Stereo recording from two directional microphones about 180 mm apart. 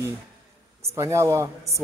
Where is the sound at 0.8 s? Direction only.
15° right (ahead or behind).